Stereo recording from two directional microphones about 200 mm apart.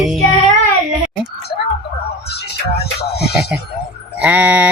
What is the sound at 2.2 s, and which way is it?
Music, 55° left (ahead or behind).